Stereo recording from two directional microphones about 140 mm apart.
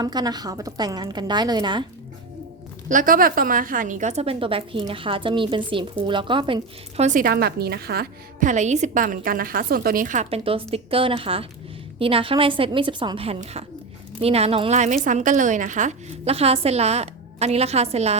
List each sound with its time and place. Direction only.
0.0 s a woman's voice: 30° right (ahead or behind)
2.9 s a woman's voice: 75° right (ahead or behind); by 7.0 s 35° right (ahead or behind)
7.0 s a woman's voice: 70° right (ahead or behind)
10.2 s a woman's voice: 45° right (ahead or behind)